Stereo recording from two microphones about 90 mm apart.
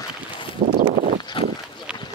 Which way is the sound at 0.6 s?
90° right.